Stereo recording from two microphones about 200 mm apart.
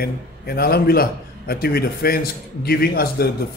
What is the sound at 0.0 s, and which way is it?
A man's voice, 50° left (ahead or behind).